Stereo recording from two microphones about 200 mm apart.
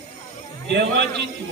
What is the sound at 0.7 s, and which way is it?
Speech, 60° right (ahead or behind).